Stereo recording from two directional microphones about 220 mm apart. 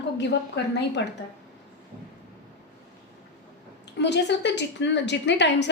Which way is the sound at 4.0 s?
50° left (ahead or behind).